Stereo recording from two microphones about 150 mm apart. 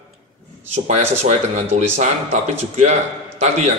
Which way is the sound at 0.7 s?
50° right (ahead or behind).